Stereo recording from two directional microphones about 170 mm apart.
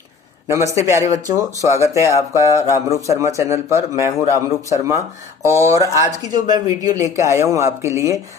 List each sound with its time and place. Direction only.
0.4 s a man's voice: 20° right (ahead or behind)